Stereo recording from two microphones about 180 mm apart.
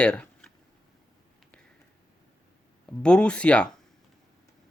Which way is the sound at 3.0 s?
5° left (ahead or behind).